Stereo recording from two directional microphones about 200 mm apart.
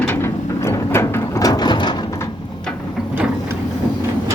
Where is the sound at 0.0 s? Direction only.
10° left (ahead or behind).